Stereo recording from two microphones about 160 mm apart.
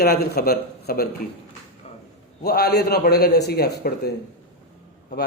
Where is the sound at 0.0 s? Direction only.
70° left (ahead or behind).